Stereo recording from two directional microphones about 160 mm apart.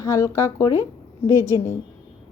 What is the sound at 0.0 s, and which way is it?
A woman's voice, 20° left (ahead or behind).